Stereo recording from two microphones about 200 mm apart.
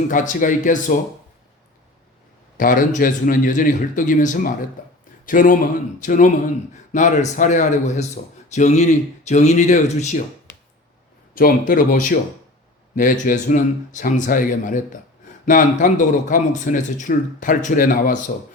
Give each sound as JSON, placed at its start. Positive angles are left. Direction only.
{"t": 0.1, "sound": "a man's voice", "side_deg": 40}
{"t": 2.6, "sound": "a man's voice", "side_deg": 45}
{"t": 4.8, "sound": "a sound", "side_deg": 40}
{"t": 5.2, "sound": "a man's voice", "side_deg": 45}
{"t": 11.3, "sound": "a man's voice", "side_deg": 45}